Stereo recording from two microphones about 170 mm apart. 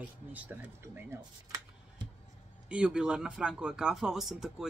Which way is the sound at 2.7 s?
5° right (ahead or behind).